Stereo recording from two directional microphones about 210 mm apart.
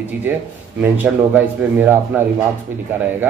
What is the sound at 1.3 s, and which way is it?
Speech, 10° right (ahead or behind).